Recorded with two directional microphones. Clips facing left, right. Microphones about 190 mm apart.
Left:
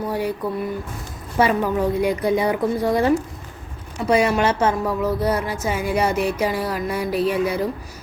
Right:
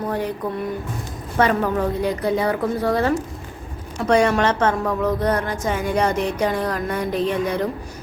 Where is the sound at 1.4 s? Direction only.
10° left (ahead or behind).